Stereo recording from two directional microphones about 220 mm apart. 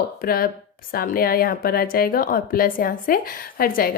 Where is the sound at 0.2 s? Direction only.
40° left (ahead or behind).